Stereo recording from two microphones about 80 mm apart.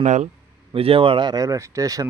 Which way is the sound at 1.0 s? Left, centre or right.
Right.